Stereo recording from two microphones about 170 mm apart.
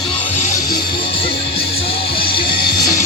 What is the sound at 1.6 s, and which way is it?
Music, 30° left (ahead or behind).